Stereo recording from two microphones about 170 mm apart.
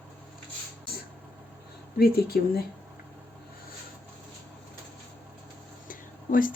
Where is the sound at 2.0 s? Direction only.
65° left (ahead or behind).